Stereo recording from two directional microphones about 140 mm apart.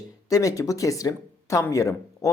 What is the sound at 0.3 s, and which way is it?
Speech, 25° left (ahead or behind).